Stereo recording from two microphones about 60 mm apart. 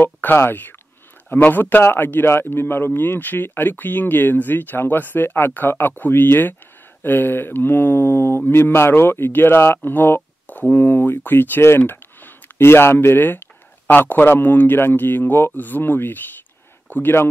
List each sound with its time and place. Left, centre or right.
0.0 s a man's voice: left